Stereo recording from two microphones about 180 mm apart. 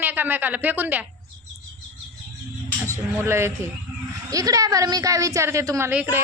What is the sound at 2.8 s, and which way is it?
A woman's voice, 15° right (ahead or behind).